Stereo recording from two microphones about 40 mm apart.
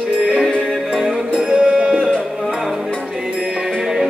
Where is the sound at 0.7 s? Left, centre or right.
Centre.